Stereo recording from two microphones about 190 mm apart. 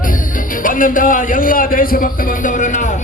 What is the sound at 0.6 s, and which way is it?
Speech, 45° left (ahead or behind).